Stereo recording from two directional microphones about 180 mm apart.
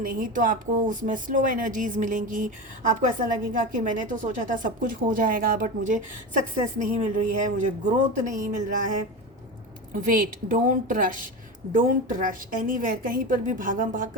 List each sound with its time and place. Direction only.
0.0 s speech: 50° right (ahead or behind)
9.9 s speech: 50° right (ahead or behind)